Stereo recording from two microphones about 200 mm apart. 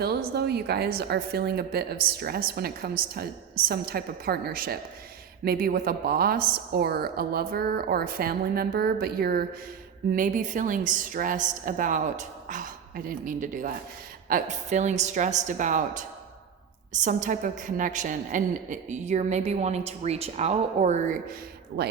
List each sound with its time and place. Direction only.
0.0 s a woman's voice: 55° right (ahead or behind)